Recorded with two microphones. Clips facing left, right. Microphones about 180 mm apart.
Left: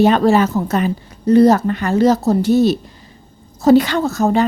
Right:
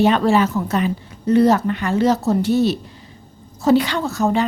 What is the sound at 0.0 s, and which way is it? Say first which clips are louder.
A woman's voice: left 3 dB; 40° left (ahead or behind).